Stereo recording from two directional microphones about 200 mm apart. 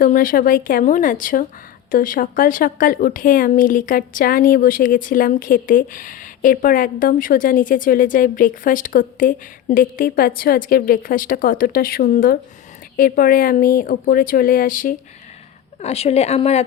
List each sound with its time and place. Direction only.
0.0 s a woman's voice: 40° left (ahead or behind)
15.8 s speech: 30° left (ahead or behind)